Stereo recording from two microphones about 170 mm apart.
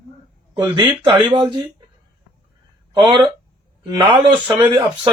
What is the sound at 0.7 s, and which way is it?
Speech, 30° right (ahead or behind).